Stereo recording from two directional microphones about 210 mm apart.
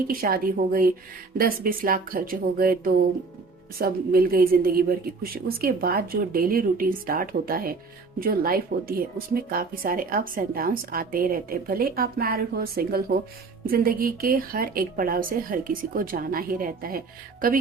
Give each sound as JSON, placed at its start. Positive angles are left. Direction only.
{"t": 0.1, "sound": "speech", "side_deg": -45}